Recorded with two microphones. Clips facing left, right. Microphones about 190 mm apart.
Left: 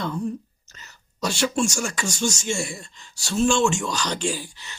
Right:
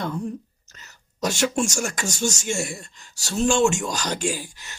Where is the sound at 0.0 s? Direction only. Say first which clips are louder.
Left 1 dB; 50° right (ahead or behind).